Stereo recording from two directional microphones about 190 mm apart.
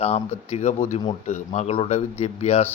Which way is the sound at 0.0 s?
35° left (ahead or behind).